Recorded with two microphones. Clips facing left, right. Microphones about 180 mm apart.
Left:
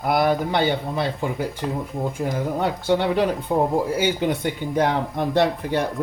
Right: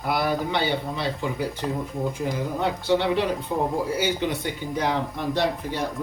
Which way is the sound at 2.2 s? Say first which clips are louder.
Left 4 dB; 50° left (ahead or behind).